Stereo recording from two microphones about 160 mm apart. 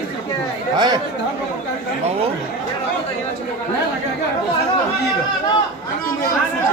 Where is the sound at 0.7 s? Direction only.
25° right (ahead or behind).